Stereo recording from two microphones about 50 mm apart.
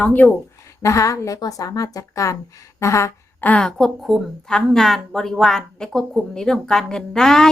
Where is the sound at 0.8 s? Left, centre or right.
Left.